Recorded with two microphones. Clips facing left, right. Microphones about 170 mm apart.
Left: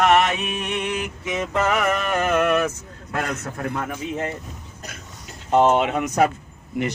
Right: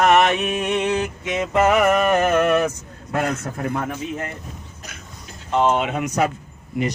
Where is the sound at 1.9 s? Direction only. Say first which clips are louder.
Right 5 dB; 50° right (ahead or behind).